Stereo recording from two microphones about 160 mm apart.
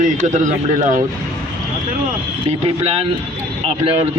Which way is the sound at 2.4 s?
40° right (ahead or behind).